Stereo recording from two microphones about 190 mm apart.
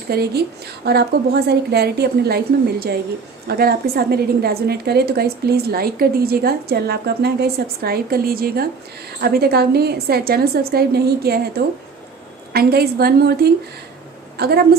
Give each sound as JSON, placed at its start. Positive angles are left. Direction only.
{"t": 0.1, "sound": "a woman's voice", "side_deg": -55}
{"t": 3.4, "sound": "a woman's voice", "side_deg": -55}